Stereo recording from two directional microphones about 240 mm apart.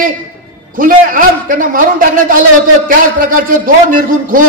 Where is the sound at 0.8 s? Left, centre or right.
Right.